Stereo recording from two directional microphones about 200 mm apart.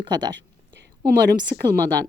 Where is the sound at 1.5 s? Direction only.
25° right (ahead or behind).